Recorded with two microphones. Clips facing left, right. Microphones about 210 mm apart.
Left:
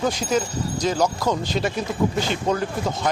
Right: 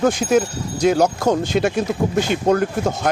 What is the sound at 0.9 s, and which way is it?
Speech, 55° right (ahead or behind).